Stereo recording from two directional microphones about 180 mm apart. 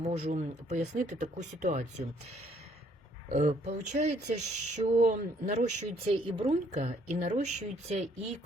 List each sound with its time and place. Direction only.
0.0 s speech: 40° right (ahead or behind)
3.2 s speech: 40° right (ahead or behind)